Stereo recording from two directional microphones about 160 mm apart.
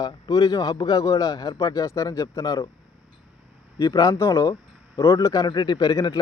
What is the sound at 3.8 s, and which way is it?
Speech, 25° left (ahead or behind).